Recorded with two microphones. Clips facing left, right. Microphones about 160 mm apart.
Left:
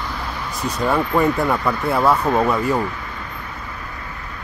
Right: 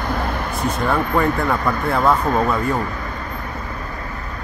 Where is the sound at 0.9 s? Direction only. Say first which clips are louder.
Left 2 dB; 10° left (ahead or behind).